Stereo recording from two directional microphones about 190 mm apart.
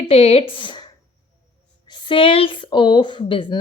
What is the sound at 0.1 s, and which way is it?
Speech, 30° left (ahead or behind).